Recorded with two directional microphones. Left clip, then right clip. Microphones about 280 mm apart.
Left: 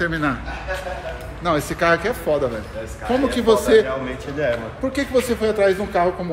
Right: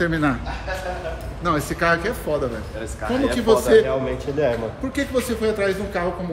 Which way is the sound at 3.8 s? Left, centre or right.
Right.